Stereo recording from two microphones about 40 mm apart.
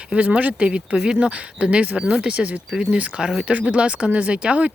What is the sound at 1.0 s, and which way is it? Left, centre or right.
Speech, centre.